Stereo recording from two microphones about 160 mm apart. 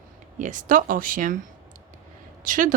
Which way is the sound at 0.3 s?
55° right (ahead or behind).